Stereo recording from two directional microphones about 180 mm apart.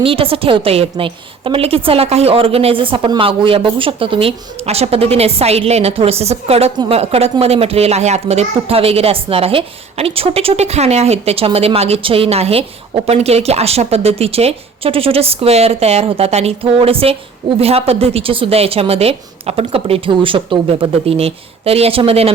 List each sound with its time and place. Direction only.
0.0 s a woman's voice: 30° right (ahead or behind)